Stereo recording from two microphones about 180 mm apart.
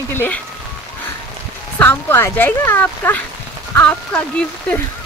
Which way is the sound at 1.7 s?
10° left (ahead or behind).